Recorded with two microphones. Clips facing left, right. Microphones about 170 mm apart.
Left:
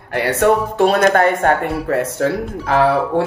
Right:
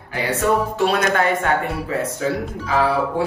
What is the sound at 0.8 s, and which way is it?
Speech, 45° left (ahead or behind).